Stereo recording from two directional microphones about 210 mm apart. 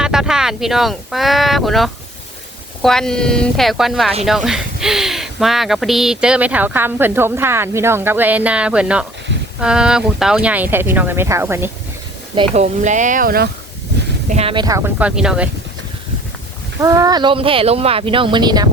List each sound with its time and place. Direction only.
0.0 s speech: 5° right (ahead or behind)
12.4 s speech: 35° right (ahead or behind)
14.3 s speech: 30° right (ahead or behind); by 15.4 s 5° right (ahead or behind)
16.8 s speech: 15° right (ahead or behind)